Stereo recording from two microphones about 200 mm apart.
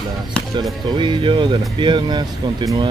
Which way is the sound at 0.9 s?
25° right (ahead or behind).